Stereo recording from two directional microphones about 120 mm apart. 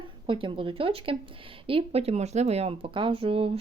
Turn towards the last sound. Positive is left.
turn(degrees=-50)  # may be behind; listen again after turning